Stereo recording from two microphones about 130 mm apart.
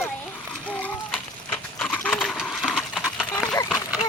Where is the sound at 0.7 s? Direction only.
10° left (ahead or behind).